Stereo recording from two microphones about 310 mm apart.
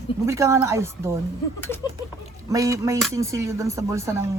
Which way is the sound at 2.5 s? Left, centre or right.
Centre.